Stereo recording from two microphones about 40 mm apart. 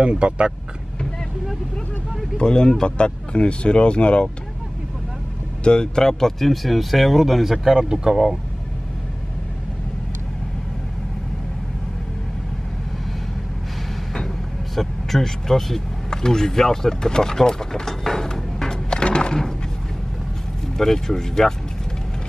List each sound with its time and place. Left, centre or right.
0.0 s speech: right
2.3 s speech: centre
5.6 s speech: left; by 7.6 s centre
7.6 s speech: centre
14.8 s speech: centre
20.7 s speech: centre